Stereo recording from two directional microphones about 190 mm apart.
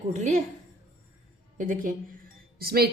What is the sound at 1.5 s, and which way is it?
A woman's voice, 45° right (ahead or behind).